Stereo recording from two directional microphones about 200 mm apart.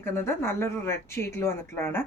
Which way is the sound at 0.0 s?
10° left (ahead or behind).